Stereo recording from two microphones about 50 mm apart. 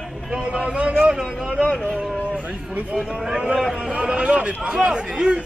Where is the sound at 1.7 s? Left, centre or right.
Centre.